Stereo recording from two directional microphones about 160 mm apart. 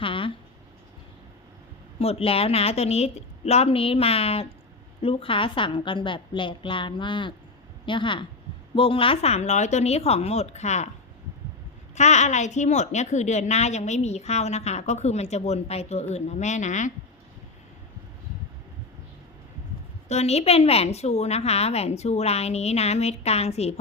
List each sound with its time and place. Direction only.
0.0 s a sound: 35° left (ahead or behind)
2.0 s a woman's voice: 40° left (ahead or behind)
11.9 s a woman's voice: 45° left (ahead or behind)
20.1 s a woman's voice: 40° left (ahead or behind)